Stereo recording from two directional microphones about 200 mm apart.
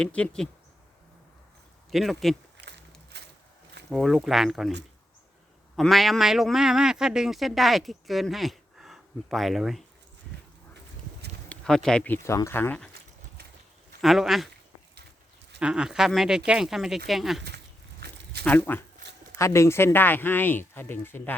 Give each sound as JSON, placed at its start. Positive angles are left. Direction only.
{"t": 0.0, "sound": "a man's voice", "side_deg": 5}
{"t": 1.9, "sound": "a man's voice", "side_deg": 0}
{"t": 2.6, "sound": "a sound", "side_deg": -55}
{"t": 3.8, "sound": "a man's voice", "side_deg": 0}
{"t": 5.7, "sound": "a man's voice", "side_deg": 0}
{"t": 11.4, "sound": "speech", "side_deg": 5}
{"t": 14.0, "sound": "a man's voice", "side_deg": 0}
{"t": 15.6, "sound": "a man's voice", "side_deg": -5}
{"t": 18.4, "sound": "speech", "side_deg": 10}